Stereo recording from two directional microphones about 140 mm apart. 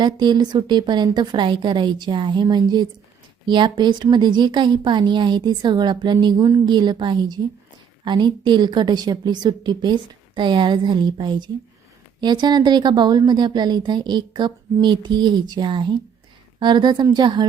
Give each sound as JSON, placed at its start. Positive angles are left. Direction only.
{"t": 0.0, "sound": "speech", "side_deg": -30}